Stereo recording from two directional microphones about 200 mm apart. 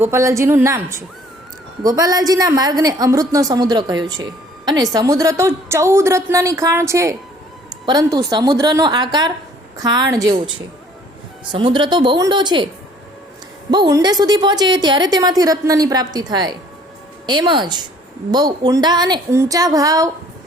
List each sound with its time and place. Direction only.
0.0 s a woman's voice: 15° right (ahead or behind)
11.5 s a woman's voice: 25° right (ahead or behind)
13.7 s a woman's voice: 20° right (ahead or behind)